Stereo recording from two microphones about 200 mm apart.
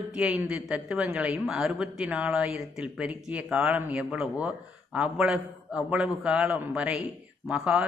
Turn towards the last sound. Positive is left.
turn(degrees=-5)  # may be behind; listen again after turning